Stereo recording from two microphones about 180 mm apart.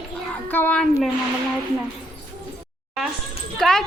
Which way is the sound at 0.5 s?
10° left (ahead or behind).